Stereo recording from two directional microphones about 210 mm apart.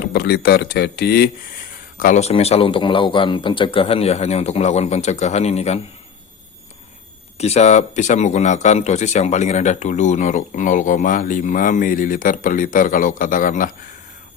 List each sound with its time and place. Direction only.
0.1 s speech: 50° left (ahead or behind)
2.0 s a man's voice: 35° left (ahead or behind)
7.3 s speech: 30° left (ahead or behind)